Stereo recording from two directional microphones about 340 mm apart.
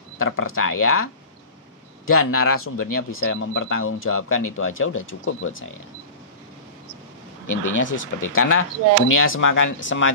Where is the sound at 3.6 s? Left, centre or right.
Left.